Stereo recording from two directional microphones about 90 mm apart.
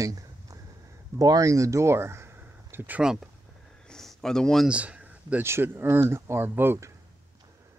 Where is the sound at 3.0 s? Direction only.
5° right (ahead or behind).